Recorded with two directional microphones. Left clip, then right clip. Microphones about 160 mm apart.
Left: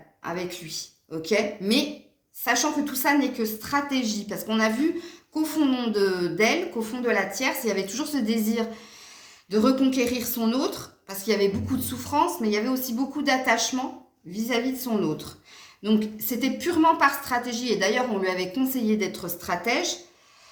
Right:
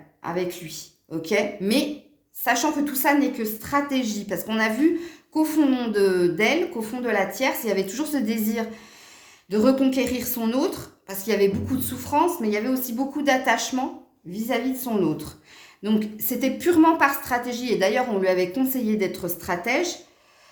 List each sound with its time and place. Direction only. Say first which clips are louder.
0.2 s a woman's voice: right 4 dB; 40° right (ahead or behind)